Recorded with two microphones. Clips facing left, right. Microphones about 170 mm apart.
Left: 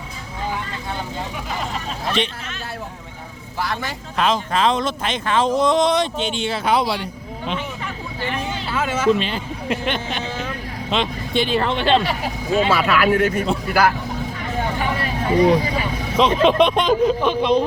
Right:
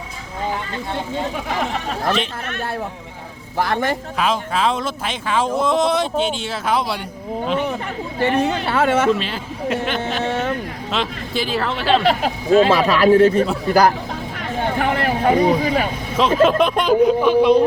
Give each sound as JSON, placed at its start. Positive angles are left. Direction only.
{"t": 1.5, "sound": "speech", "side_deg": -70}
{"t": 3.6, "sound": "speech", "side_deg": -55}
{"t": 4.2, "sound": "speech", "side_deg": -5}
{"t": 8.4, "sound": "speech", "side_deg": -65}
{"t": 9.1, "sound": "speech", "side_deg": 0}
{"t": 10.2, "sound": "vehicle", "side_deg": -65}
{"t": 10.9, "sound": "speech", "side_deg": 0}
{"t": 12.0, "sound": "speech", "side_deg": -60}
{"t": 12.7, "sound": "speech", "side_deg": -35}
{"t": 14.8, "sound": "vehicle", "side_deg": -65}
{"t": 16.1, "sound": "speech", "side_deg": -5}